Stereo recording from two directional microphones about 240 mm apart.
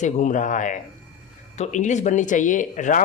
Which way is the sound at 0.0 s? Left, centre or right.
Left.